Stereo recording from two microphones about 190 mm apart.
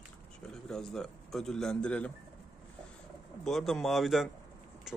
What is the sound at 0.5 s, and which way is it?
Speech, 5° left (ahead or behind).